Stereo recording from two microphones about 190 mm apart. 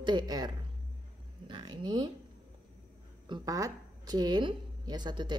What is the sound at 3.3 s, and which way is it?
Speech, 20° right (ahead or behind).